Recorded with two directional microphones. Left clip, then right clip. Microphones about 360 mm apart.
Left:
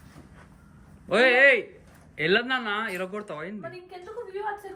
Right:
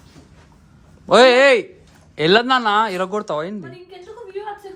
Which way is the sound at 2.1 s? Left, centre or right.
Centre.